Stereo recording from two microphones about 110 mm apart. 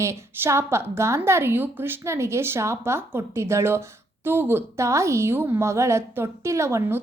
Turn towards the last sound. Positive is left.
turn(degrees=-25)  # may be behind; listen again after turning